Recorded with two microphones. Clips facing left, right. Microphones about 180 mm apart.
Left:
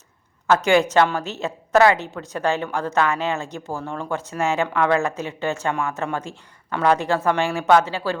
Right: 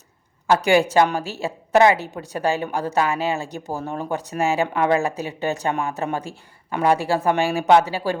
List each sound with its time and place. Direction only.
0.5 s a woman's voice: 15° right (ahead or behind)